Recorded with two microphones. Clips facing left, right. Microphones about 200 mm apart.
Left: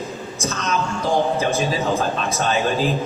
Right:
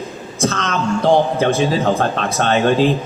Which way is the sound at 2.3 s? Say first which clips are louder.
Right 7 dB; 55° right (ahead or behind).